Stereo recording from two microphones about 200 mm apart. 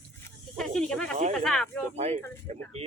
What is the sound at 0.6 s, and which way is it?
Snake, 5° left (ahead or behind).